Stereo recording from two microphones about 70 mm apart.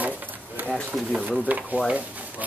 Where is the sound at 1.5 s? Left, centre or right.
Right.